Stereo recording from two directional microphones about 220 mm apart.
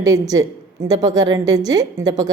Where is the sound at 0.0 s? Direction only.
15° right (ahead or behind).